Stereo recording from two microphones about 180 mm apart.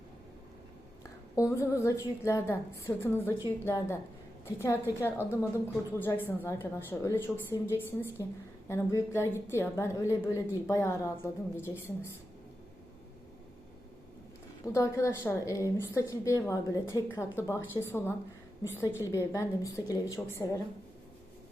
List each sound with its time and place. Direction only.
1.4 s a woman's voice: 15° left (ahead or behind)
14.6 s a woman's voice: 15° left (ahead or behind)
19.1 s a woman's voice: 15° left (ahead or behind)